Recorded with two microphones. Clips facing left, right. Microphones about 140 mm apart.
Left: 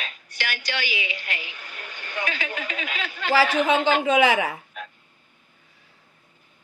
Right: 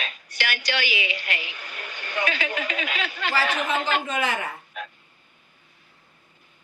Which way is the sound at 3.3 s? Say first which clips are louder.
Left 6 dB; 90° left.